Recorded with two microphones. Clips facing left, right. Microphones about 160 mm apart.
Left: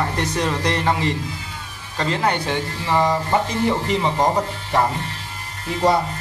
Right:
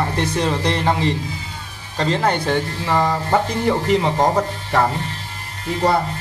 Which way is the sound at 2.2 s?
45° right (ahead or behind).